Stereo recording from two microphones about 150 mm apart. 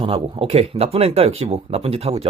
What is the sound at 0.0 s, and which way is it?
Speech, 35° right (ahead or behind).